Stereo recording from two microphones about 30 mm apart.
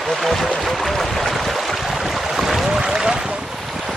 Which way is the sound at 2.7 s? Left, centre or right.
Right.